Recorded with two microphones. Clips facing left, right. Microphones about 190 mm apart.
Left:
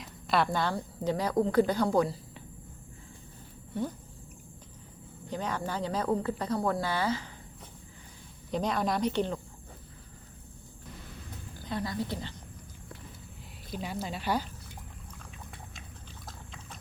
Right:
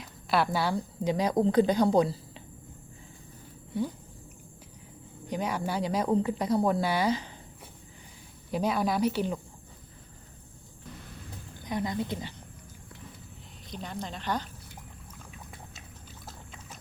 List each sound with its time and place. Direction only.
0.0 s a woman's voice: centre (ahead or behind); by 2.4 s 20° right (ahead or behind)
5.3 s speech: 10° right (ahead or behind)
8.4 s speech: 5° right (ahead or behind)
11.6 s speech: 20° right (ahead or behind)
13.7 s speech: 5° left (ahead or behind)
16.2 s clip-clop: 5° right (ahead or behind)